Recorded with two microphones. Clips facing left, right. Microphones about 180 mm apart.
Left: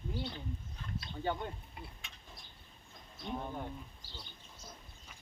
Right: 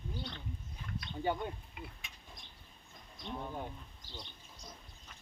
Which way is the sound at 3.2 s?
10° left (ahead or behind).